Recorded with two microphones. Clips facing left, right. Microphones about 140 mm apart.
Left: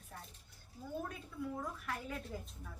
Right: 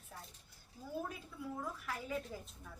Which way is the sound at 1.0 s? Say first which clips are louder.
Left 2 dB; 5° right (ahead or behind).